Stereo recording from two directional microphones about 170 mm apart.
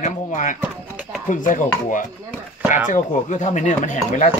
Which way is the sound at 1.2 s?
50° left (ahead or behind).